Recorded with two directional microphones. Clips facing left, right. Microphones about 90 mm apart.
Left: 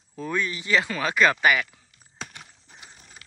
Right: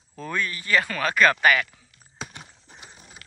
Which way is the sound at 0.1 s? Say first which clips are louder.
Left 1 dB; 15° left (ahead or behind).